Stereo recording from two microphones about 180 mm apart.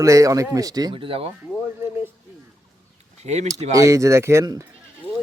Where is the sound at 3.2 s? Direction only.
40° right (ahead or behind).